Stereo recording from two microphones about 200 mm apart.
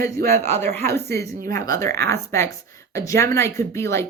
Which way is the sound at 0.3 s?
15° left (ahead or behind).